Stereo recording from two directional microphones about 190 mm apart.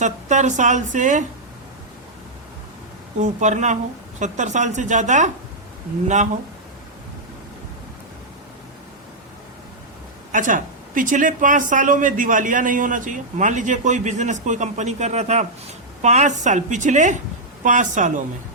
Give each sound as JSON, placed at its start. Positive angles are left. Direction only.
{"t": 0.0, "sound": "a woman's voice", "side_deg": -40}
{"t": 3.2, "sound": "a woman's voice", "side_deg": -40}
{"t": 10.3, "sound": "a woman's voice", "side_deg": -45}